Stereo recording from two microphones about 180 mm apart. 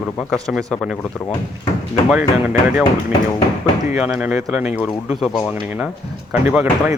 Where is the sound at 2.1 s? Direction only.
5° right (ahead or behind).